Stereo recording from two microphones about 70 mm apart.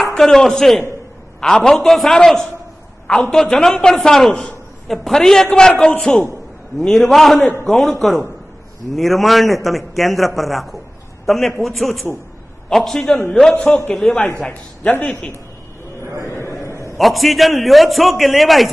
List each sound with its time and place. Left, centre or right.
0.0 s a man's voice: centre
4.3 s a man's voice: centre
4.8 s a man's voice: centre
14.5 s a man's voice: left
16.1 s a man's voice: right
16.4 s a sound: right
16.9 s a man's voice: centre